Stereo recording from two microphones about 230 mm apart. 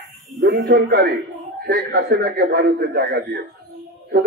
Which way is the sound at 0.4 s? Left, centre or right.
Right.